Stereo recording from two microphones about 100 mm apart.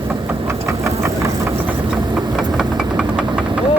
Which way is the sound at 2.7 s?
5° right (ahead or behind).